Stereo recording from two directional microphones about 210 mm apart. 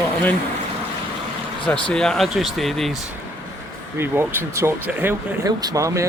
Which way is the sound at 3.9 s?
10° right (ahead or behind).